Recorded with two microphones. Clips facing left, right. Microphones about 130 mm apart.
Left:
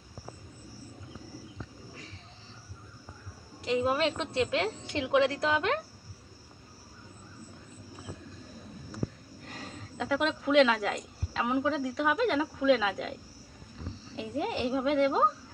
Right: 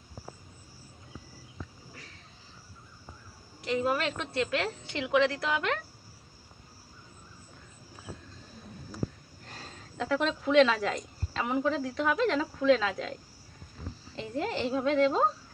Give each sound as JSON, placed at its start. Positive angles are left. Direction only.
{"t": 3.6, "sound": "a woman's voice", "side_deg": 20}
{"t": 9.5, "sound": "speech", "side_deg": 5}
{"t": 14.1, "sound": "a child's voice", "side_deg": 10}